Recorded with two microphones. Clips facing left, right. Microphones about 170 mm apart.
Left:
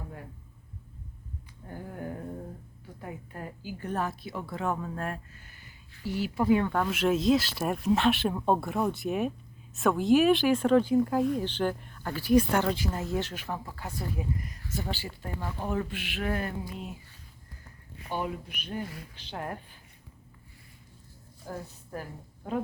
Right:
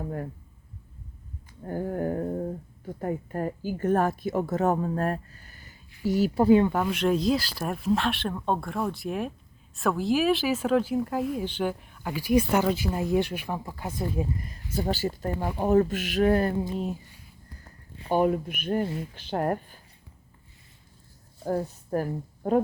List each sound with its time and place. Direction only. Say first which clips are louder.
1.6 s a sound: right 10 dB; 50° right (ahead or behind)
2.8 s a woman's voice: right 11 dB; 45° right (ahead or behind); by 6.7 s 30° right (ahead or behind)
6.7 s speech: right 2 dB; 10° right (ahead or behind)
6.9 s speech: even; 5° left (ahead or behind); by 14.6 s 30° right (ahead or behind)
14.8 s a woman's voice: right 9 dB; 40° right (ahead or behind)
18.1 s a woman's voice: right 10 dB; 50° right (ahead or behind)
21.9 s a woman's voice: right 12 dB; 45° right (ahead or behind)